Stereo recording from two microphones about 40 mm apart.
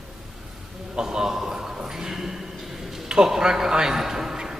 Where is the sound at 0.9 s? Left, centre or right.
Centre.